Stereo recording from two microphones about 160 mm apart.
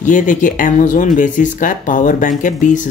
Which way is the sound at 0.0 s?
55° left (ahead or behind).